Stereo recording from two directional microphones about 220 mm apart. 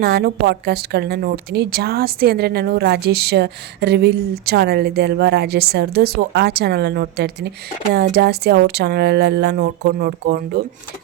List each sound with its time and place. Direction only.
0.0 s a woman's voice: 45° right (ahead or behind)